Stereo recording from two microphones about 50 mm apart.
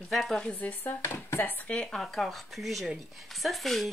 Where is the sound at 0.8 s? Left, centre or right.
Left.